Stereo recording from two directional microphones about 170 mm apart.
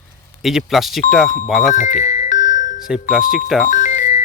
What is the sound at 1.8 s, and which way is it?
Music, 45° left (ahead or behind).